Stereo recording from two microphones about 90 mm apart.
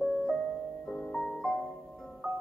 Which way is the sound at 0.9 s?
5° left (ahead or behind).